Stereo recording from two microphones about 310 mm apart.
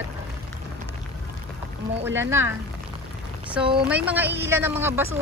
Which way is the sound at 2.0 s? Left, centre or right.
Centre.